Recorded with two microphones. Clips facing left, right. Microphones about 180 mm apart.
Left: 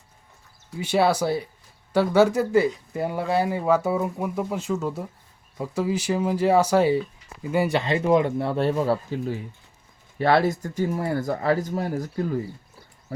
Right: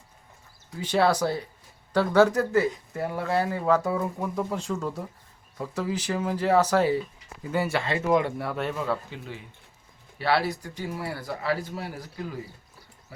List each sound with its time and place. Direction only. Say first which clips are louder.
0.8 s speech: left 2 dB; 10° left (ahead or behind); by 12.4 s 45° left (ahead or behind)